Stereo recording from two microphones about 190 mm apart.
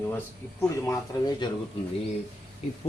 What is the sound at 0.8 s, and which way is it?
Speech, 20° left (ahead or behind).